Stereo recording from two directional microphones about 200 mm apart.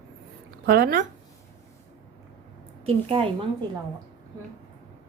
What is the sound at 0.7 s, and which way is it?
Speech, 50° right (ahead or behind).